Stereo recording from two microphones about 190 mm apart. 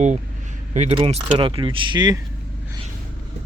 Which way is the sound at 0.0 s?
40° right (ahead or behind).